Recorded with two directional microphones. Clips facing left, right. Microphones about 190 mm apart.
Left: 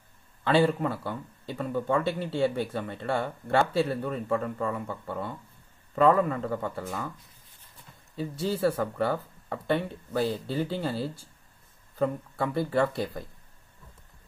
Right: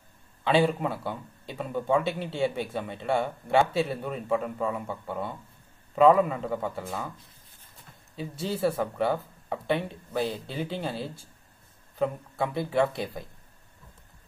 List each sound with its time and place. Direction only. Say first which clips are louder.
0.4 s speech: even; 15° right (ahead or behind)
8.5 s speech: right 1 dB; 5° right (ahead or behind)
12.0 s speech: even; 10° right (ahead or behind)